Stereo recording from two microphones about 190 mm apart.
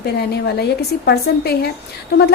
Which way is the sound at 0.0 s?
60° left (ahead or behind).